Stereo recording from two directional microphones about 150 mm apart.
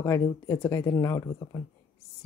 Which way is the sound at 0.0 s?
15° left (ahead or behind).